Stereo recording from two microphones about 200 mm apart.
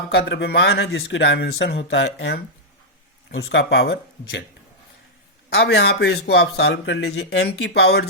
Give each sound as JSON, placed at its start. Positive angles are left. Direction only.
{"t": 0.1, "sound": "a man's voice", "side_deg": 55}
{"t": 5.5, "sound": "a man's voice", "side_deg": 55}